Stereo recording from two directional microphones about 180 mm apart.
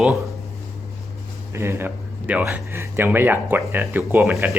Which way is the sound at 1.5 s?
15° right (ahead or behind).